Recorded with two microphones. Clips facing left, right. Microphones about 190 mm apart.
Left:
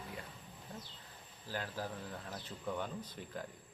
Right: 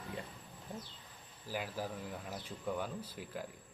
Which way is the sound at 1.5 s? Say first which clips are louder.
Right 1 dB; 10° right (ahead or behind).